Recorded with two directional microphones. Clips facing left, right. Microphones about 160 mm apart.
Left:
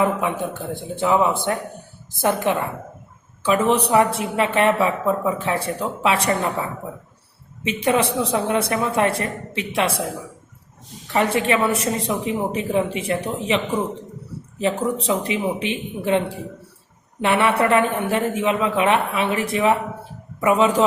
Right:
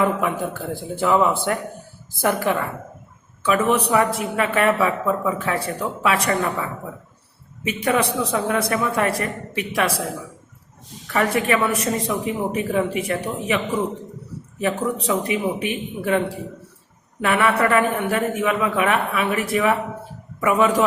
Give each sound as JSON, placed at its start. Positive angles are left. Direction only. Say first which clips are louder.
{"t": 0.0, "sound": "a woman's voice", "louder": "even", "side_deg": 20}
{"t": 11.1, "sound": "a woman's voice", "louder": "left 1 dB", "side_deg": 25}